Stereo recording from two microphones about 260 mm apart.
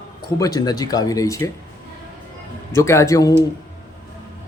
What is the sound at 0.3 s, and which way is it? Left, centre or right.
Speech, centre.